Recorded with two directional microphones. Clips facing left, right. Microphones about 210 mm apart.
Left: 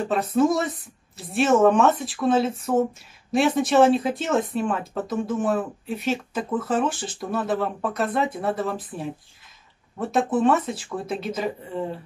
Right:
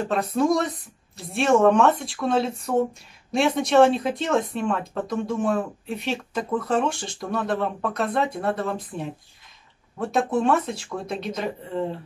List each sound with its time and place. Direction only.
0.1 s speech: centre (ahead or behind)